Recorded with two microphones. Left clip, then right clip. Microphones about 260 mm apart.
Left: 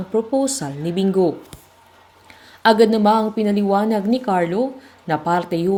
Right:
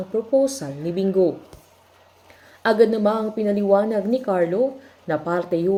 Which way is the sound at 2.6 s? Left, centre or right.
Left.